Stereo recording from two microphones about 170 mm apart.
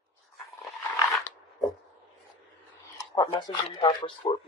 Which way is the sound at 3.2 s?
30° left (ahead or behind).